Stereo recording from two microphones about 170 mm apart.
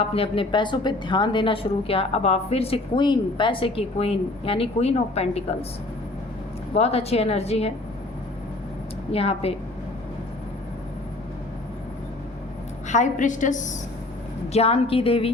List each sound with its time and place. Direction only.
0.1 s a woman's voice: 35° left (ahead or behind)
6.7 s a woman's voice: 35° left (ahead or behind)
9.1 s a woman's voice: 35° left (ahead or behind)
12.9 s a woman's voice: 45° left (ahead or behind)
14.5 s a woman's voice: 35° left (ahead or behind)